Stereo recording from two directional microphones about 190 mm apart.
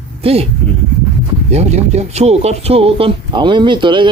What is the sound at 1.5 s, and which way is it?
Speech, 35° right (ahead or behind).